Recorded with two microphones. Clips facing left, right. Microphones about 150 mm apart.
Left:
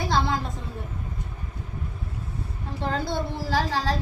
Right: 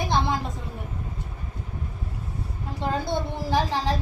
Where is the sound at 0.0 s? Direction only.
20° right (ahead or behind).